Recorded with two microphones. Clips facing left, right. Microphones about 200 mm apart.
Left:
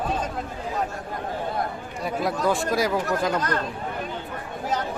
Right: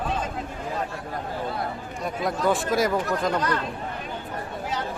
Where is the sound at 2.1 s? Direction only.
Centre (ahead or behind).